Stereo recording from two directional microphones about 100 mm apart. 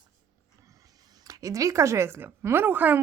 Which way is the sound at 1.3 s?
35° right (ahead or behind).